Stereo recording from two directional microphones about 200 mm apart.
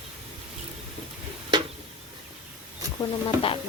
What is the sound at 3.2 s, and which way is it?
Stir, 25° left (ahead or behind).